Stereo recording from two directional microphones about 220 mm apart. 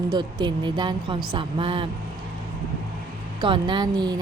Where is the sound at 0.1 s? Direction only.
20° right (ahead or behind).